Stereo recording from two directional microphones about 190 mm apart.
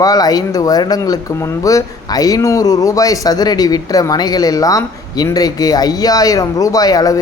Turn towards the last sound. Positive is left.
turn(degrees=20)  # may be behind; listen again after turning